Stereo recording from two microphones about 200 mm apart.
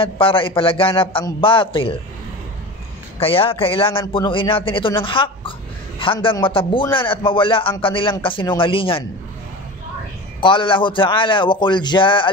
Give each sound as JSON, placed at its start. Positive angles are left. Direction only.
{"t": 0.0, "sound": "a man's voice", "side_deg": 25}
{"t": 3.2, "sound": "a man's voice", "side_deg": 25}
{"t": 10.4, "sound": "a man's voice", "side_deg": 25}